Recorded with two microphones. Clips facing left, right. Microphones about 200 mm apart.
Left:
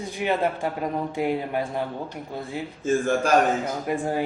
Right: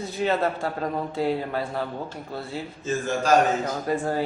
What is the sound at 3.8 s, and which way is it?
Speech, 15° left (ahead or behind).